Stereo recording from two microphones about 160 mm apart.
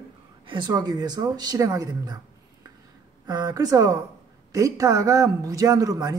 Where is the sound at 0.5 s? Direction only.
25° right (ahead or behind).